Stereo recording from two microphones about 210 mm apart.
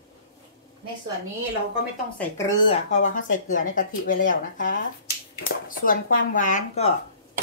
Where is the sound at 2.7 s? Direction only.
35° left (ahead or behind).